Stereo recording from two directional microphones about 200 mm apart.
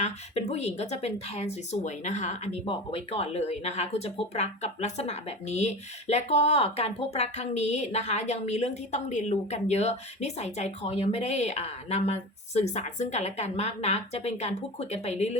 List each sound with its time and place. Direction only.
0.0 s speech: 35° left (ahead or behind)